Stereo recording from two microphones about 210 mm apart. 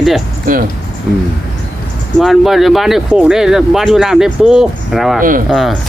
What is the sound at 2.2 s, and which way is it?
Speech, centre (ahead or behind).